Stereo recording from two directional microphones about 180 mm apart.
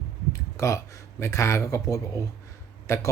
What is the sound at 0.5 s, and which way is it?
Speech, 15° left (ahead or behind).